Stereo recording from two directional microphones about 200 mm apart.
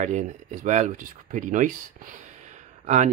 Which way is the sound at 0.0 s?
35° right (ahead or behind).